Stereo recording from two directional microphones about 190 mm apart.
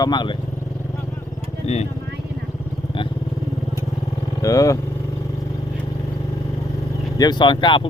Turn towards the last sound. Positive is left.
turn(degrees=25)  # may be behind; listen again after turning